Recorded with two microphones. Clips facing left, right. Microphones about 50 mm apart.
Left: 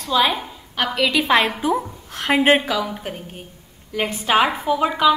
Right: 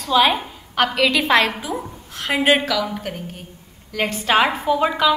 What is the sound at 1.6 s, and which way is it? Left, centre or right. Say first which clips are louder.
Speech: left 7 dB; left.